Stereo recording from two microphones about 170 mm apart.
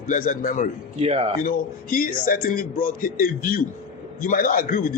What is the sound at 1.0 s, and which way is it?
Speech, 35° right (ahead or behind).